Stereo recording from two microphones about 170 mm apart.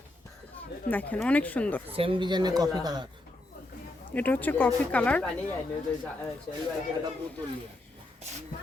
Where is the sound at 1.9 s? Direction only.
30° right (ahead or behind).